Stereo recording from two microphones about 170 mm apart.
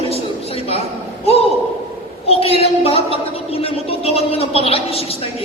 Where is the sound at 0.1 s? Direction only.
35° left (ahead or behind).